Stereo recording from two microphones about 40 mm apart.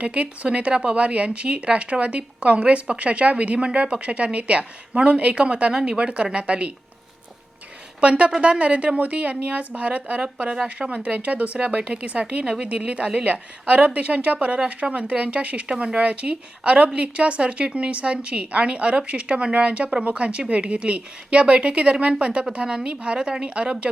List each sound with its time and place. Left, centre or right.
0.0 s speech: right
5.7 s speech: centre
6.0 s speech: right
8.0 s speech: right
10.2 s speech: right